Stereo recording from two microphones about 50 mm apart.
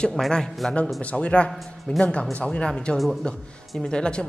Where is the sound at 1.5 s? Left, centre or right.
Centre.